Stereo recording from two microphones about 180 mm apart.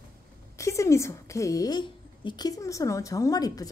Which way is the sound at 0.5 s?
15° left (ahead or behind).